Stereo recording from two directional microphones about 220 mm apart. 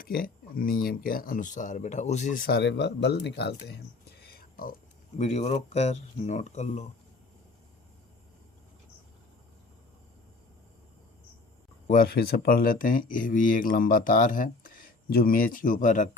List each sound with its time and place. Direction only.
0.0 s speech: 40° left (ahead or behind)
4.2 s whispering: 45° left (ahead or behind)
5.1 s speech: 30° left (ahead or behind)
11.9 s speech: 40° left (ahead or behind)